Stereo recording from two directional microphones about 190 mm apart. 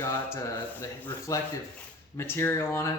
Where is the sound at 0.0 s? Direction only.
15° left (ahead or behind).